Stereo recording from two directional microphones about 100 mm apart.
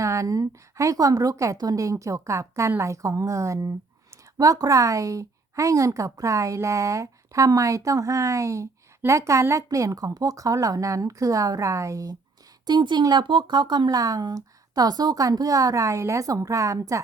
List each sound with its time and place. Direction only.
0.0 s speech: 30° right (ahead or behind)
12.6 s speech: 45° right (ahead or behind)